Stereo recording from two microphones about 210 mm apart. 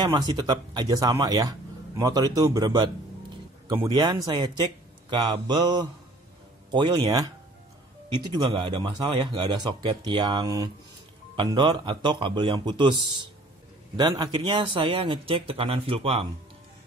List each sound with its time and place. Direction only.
0.0 s speech: 20° right (ahead or behind)